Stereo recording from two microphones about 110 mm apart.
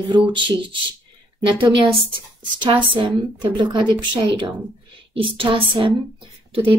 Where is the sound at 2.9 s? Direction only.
45° right (ahead or behind).